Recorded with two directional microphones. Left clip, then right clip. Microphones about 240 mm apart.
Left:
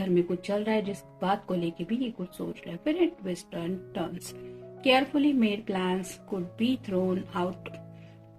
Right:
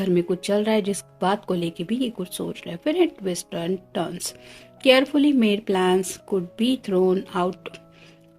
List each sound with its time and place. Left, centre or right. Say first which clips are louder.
0.0 s speech: right 5 dB; right